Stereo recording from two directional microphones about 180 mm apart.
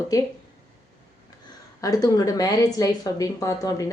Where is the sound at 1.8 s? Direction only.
20° left (ahead or behind).